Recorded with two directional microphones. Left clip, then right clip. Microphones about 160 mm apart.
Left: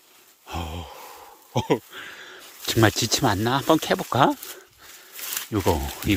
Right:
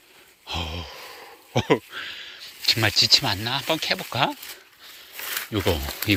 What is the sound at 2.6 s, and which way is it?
Speech, 50° left (ahead or behind).